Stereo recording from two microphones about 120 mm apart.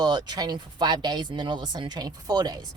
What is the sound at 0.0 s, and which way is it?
Speech, 35° right (ahead or behind).